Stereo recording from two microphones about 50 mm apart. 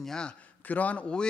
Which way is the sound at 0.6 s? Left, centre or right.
Left.